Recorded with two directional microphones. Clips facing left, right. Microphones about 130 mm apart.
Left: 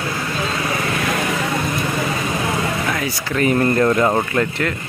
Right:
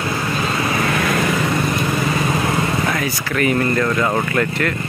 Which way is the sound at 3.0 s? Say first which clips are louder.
Even; 25° left (ahead or behind).